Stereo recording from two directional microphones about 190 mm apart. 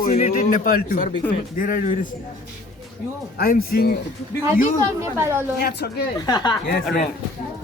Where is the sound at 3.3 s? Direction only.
50° left (ahead or behind).